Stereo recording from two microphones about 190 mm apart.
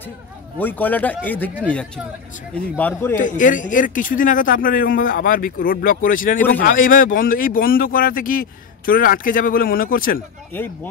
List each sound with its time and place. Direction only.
0.6 s a man's voice: 10° left (ahead or behind)
3.2 s speech: 45° left (ahead or behind)
10.5 s a man's voice: 10° left (ahead or behind)